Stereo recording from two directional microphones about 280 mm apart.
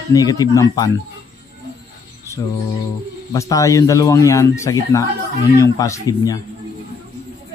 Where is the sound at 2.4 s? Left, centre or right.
Centre.